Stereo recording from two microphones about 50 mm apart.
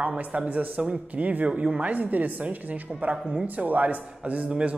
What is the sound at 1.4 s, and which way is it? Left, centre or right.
Speech, centre.